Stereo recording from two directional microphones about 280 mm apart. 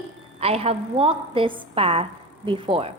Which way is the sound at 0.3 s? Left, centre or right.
Right.